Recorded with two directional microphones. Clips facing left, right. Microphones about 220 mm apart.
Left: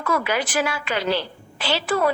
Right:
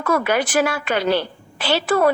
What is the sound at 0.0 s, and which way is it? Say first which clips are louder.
A woman's voice: right 4 dB; 55° right (ahead or behind).